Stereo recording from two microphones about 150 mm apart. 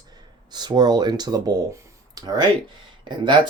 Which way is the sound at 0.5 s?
30° right (ahead or behind).